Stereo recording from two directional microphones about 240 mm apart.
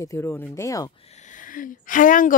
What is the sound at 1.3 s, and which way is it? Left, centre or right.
Speech, left.